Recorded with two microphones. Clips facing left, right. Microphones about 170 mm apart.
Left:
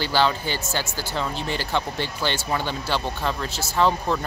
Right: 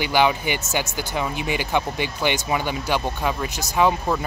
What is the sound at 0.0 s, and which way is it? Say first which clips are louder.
Speech: right 2 dB; 15° right (ahead or behind).